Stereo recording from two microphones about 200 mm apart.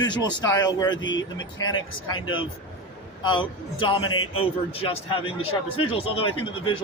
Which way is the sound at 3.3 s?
25° left (ahead or behind).